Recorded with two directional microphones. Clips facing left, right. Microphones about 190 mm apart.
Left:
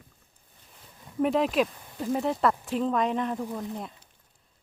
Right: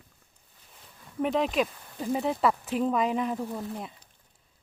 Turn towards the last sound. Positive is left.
turn(degrees=-5)  # may be behind; listen again after turning